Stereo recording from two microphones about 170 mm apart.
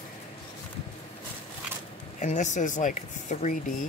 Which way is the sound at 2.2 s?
45° left (ahead or behind).